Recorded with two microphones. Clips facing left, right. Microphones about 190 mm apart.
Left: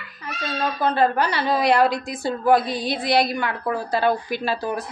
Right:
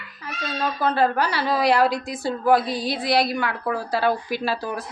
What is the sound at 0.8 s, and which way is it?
A woman's voice, 5° right (ahead or behind).